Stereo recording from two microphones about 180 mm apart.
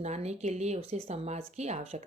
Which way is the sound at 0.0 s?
40° right (ahead or behind).